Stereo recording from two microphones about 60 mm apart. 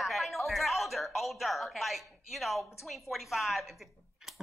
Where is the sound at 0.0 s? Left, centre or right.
Centre.